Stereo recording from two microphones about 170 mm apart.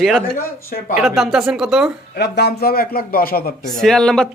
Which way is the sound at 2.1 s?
75° left (ahead or behind).